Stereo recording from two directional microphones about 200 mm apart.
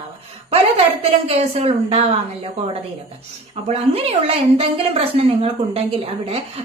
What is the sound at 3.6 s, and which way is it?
A woman's voice, 30° right (ahead or behind).